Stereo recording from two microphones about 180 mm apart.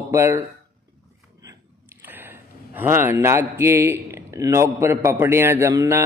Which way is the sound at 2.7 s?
10° right (ahead or behind).